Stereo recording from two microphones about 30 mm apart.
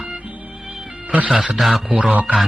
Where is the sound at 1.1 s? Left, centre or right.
Right.